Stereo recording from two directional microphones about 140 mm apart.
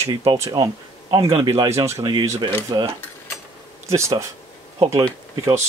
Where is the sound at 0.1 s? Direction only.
30° right (ahead or behind).